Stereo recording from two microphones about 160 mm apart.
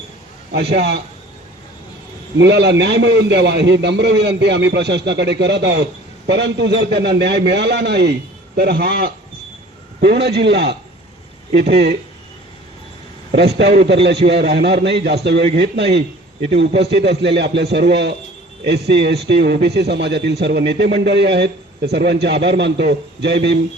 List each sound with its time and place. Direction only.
0.5 s a man's voice: 90° right
2.4 s a man's voice: 90° right
13.3 s a man's voice: 90° right